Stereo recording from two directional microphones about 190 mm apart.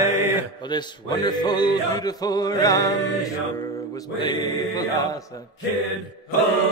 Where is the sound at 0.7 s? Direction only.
20° left (ahead or behind).